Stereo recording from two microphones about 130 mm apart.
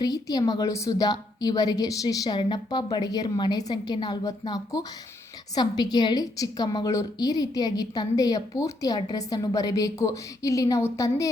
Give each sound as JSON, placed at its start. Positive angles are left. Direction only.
{"t": 0.0, "sound": "a woman's voice", "side_deg": 30}